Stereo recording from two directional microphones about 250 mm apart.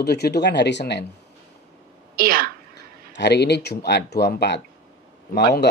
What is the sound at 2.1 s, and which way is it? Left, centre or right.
Speech, right.